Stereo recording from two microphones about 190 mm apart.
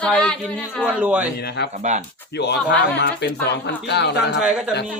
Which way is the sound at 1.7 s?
40° right (ahead or behind).